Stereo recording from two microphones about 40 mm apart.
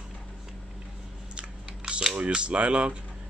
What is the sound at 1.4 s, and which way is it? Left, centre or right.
Camera, right.